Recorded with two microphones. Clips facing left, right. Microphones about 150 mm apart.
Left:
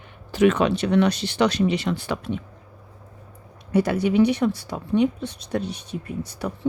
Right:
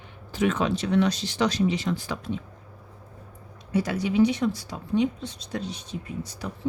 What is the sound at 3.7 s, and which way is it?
Speech, 60° left (ahead or behind).